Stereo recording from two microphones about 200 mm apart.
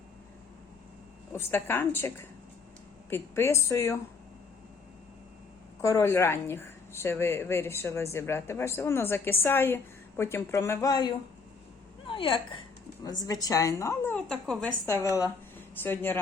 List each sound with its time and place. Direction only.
1.3 s speech: 10° left (ahead or behind)
5.8 s a woman's voice: 15° left (ahead or behind)
14.8 s speech: 15° left (ahead or behind)